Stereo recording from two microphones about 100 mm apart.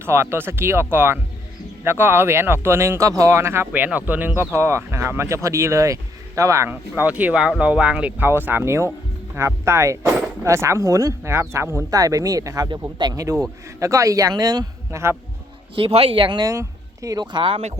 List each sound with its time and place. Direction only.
0.0 s speech: 25° right (ahead or behind)
6.7 s a man's voice: 20° right (ahead or behind); by 15.0 s 40° right (ahead or behind)
15.7 s speech: 70° right (ahead or behind); by 16.5 s 50° right (ahead or behind)
16.5 s speech: 35° right (ahead or behind)
17.3 s speech: 60° right (ahead or behind)